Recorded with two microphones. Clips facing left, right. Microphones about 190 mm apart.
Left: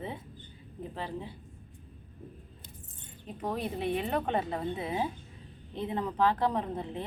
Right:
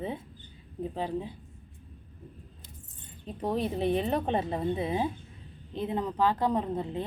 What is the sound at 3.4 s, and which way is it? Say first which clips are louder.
Speech: right 4 dB; 30° right (ahead or behind).